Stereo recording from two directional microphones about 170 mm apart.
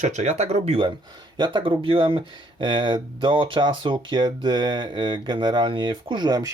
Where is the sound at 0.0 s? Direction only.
45° right (ahead or behind).